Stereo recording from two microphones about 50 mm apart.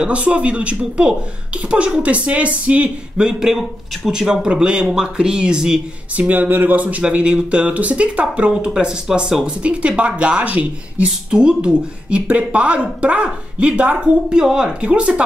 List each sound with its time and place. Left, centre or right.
0.0 s a woman's voice: right
3.2 s a man's voice: centre
6.1 s a woman's voice: right
11.1 s a woman's voice: centre